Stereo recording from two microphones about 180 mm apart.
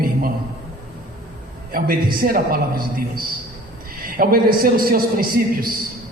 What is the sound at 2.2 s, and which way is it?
A man's voice, 55° right (ahead or behind).